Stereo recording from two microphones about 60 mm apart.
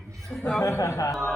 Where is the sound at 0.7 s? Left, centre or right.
Left.